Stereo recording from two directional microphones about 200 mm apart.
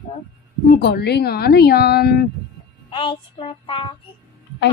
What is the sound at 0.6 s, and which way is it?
A woman's voice, 50° left (ahead or behind).